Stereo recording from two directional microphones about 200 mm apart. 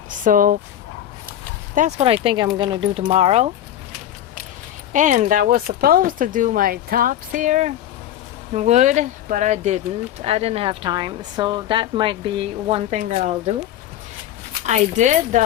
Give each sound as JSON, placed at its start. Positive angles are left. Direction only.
{"t": 0.3, "sound": "speech", "side_deg": -40}
{"t": 1.7, "sound": "speech", "side_deg": -35}
{"t": 4.9, "sound": "speech", "side_deg": -40}
{"t": 13.0, "sound": "speech", "side_deg": -40}
{"t": 14.7, "sound": "speech", "side_deg": -35}